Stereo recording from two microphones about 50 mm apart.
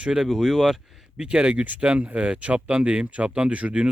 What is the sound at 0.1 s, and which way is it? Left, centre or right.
Speech, centre.